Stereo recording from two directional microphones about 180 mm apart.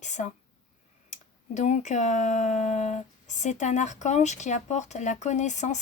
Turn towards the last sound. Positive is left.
turn(degrees=40)  # may be behind; listen again after turning